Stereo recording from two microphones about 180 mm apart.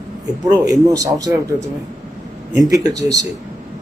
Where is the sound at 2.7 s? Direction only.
20° right (ahead or behind).